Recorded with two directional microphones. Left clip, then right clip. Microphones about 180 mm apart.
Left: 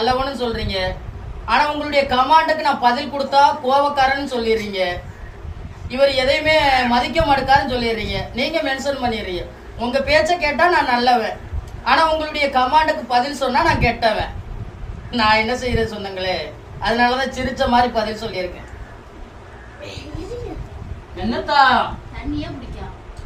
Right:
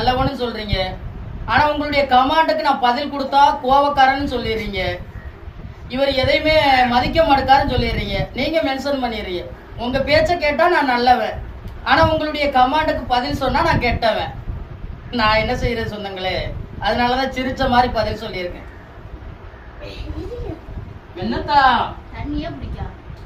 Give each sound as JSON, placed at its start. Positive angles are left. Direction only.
{"t": 0.0, "sound": "a woman's voice", "side_deg": -15}
{"t": 15.1, "sound": "a woman's voice", "side_deg": -15}